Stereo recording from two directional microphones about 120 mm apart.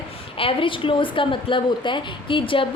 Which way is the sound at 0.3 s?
45° left (ahead or behind).